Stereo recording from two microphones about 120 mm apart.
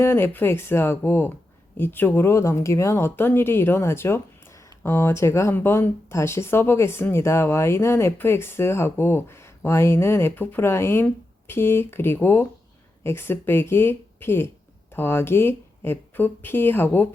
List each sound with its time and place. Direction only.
0.0 s speech: 20° left (ahead or behind)